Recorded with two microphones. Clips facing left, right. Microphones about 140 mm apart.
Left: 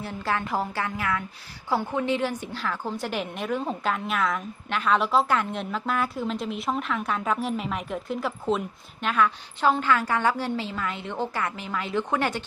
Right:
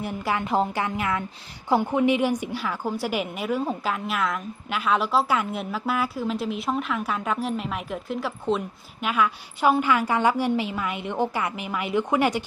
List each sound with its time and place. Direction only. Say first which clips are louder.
0.0 s a woman's voice: right 2 dB; 15° right (ahead or behind)